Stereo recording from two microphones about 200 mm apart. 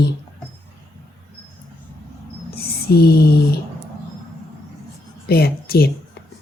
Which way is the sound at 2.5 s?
50° left (ahead or behind).